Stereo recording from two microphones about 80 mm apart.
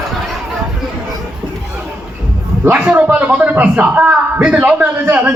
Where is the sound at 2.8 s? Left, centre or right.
Centre.